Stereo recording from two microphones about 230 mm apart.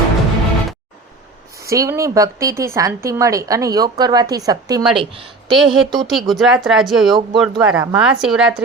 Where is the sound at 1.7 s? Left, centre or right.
Centre.